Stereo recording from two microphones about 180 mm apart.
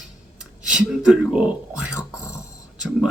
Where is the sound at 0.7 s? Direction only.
5° right (ahead or behind).